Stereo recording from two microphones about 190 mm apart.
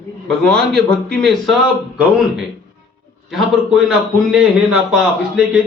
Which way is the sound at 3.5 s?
Centre (ahead or behind).